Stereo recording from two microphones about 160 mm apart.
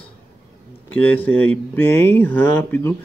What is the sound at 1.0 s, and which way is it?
Speech, 10° left (ahead or behind).